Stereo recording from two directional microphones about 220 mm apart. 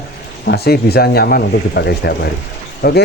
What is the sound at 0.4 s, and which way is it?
Speech, 45° left (ahead or behind).